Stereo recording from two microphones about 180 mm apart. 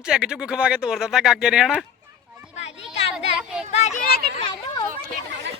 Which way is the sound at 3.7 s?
40° left (ahead or behind).